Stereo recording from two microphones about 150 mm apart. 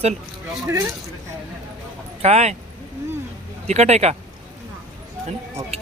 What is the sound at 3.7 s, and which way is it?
Speech, 45° right (ahead or behind).